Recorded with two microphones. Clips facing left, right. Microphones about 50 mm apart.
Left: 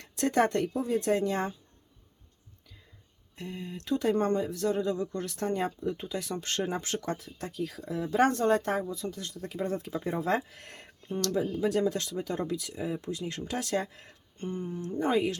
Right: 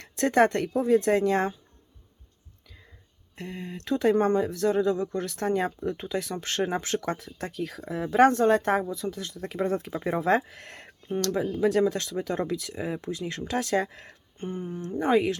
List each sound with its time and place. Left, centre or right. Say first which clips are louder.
0.0 s speech: right 4 dB; right
3.3 s speech: right 2 dB; right
11.3 s speech: right 2 dB; right
11.9 s speech: right 2 dB; right
14.3 s a sound: right 1 dB; right
14.7 s speech: right 5 dB; right